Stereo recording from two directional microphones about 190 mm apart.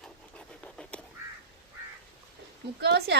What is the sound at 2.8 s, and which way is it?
Speech, 60° right (ahead or behind).